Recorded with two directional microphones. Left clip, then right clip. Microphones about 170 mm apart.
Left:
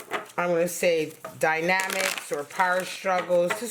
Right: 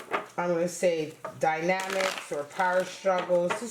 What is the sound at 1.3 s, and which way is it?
Speech, 30° left (ahead or behind).